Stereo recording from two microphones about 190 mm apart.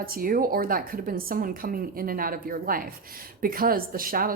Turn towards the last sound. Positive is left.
turn(degrees=-50)  # may be behind; listen again after turning